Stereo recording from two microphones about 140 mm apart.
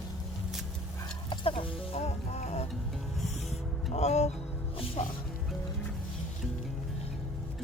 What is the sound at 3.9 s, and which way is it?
Music, 50° left (ahead or behind).